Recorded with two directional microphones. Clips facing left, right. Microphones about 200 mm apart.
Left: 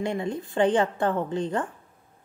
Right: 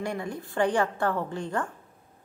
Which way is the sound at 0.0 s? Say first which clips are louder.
Left 4 dB; 20° left (ahead or behind).